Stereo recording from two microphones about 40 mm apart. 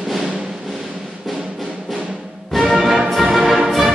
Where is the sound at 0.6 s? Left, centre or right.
Centre.